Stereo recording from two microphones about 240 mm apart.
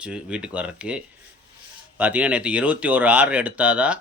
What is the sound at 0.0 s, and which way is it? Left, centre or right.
Speech, centre.